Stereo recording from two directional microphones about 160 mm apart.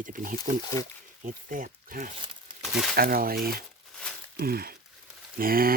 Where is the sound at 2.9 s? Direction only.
70° right (ahead or behind).